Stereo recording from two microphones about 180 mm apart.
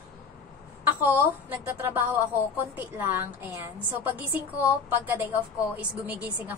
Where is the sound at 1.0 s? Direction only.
10° right (ahead or behind).